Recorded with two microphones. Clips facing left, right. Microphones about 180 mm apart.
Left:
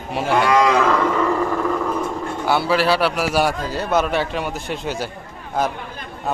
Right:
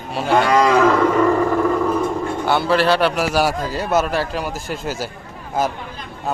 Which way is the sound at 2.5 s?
5° left (ahead or behind).